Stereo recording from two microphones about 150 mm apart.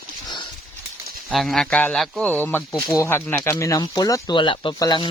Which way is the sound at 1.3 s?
Centre (ahead or behind).